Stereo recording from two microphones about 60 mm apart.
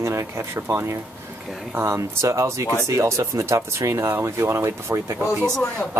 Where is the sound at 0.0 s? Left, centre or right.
Right.